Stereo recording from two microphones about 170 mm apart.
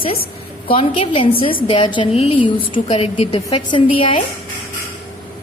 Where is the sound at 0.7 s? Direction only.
35° left (ahead or behind).